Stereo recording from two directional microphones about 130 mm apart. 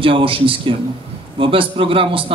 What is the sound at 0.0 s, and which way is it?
A man's voice, 40° right (ahead or behind).